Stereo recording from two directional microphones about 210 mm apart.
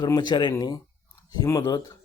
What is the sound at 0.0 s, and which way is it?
A man's voice, 20° left (ahead or behind).